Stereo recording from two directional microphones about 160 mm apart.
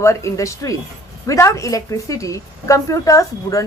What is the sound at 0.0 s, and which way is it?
A man's voice, 20° left (ahead or behind).